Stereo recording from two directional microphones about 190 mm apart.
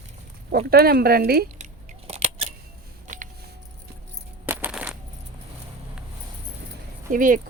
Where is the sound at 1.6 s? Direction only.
35° right (ahead or behind).